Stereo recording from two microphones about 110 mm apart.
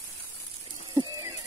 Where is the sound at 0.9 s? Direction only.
40° right (ahead or behind).